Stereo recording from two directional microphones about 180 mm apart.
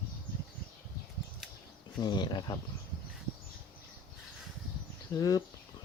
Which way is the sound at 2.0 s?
25° left (ahead or behind).